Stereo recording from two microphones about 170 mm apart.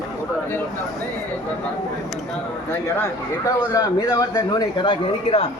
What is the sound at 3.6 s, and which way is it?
A man's voice, 25° left (ahead or behind).